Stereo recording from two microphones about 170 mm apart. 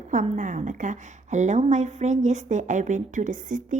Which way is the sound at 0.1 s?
50° right (ahead or behind).